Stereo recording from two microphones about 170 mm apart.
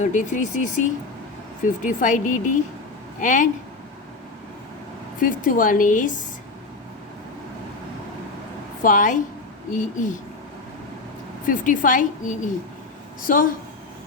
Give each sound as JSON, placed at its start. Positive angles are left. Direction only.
{"t": 0.0, "sound": "a woman's voice", "side_deg": 45}
{"t": 5.2, "sound": "a woman's voice", "side_deg": 50}
{"t": 8.8, "sound": "a woman's voice", "side_deg": 50}
{"t": 11.4, "sound": "a woman's voice", "side_deg": 50}